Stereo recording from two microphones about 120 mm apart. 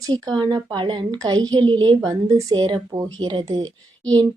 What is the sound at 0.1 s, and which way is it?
A woman's voice, 35° right (ahead or behind).